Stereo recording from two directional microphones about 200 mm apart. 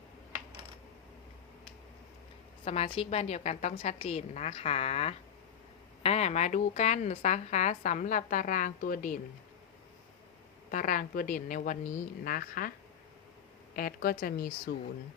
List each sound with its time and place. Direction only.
2.6 s a woman's voice: 30° left (ahead or behind)
10.7 s a woman's voice: 40° left (ahead or behind)
13.7 s a woman's voice: 45° left (ahead or behind)